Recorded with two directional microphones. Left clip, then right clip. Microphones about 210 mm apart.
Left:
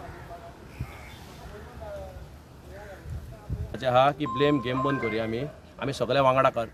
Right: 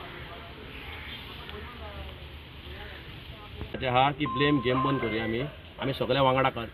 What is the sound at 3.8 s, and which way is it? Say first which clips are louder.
Speech: left 3 dB; 25° left (ahead or behind).